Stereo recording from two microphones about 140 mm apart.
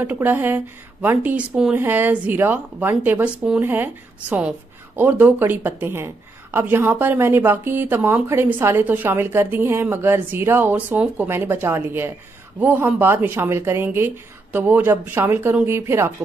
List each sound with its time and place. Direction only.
0.0 s speech: 15° right (ahead or behind)